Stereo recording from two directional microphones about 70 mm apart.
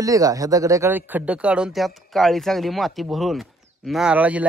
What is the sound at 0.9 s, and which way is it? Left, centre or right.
Speech, right.